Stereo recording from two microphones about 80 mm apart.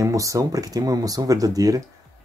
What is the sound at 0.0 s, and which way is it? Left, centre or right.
Speech, right.